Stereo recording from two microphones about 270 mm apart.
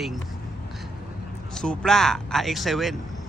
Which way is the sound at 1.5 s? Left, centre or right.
Centre.